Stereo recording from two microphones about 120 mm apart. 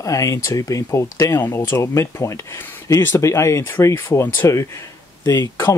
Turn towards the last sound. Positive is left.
turn(degrees=25)  # may be behind; listen again after turning